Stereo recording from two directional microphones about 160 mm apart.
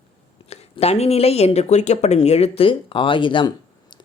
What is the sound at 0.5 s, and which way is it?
A woman's voice, 40° left (ahead or behind).